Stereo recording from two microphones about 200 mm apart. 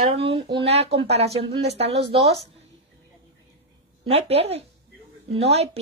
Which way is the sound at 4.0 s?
30° right (ahead or behind).